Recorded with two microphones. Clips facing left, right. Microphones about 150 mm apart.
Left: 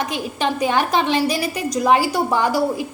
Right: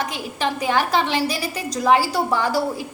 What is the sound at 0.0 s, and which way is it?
A woman's voice, 20° left (ahead or behind).